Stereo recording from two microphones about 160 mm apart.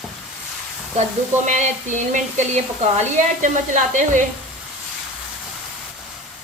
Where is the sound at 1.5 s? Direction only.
50° right (ahead or behind).